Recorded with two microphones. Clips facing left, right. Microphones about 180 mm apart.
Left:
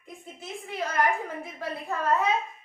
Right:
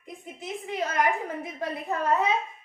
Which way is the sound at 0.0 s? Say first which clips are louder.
Right 3 dB; 20° right (ahead or behind).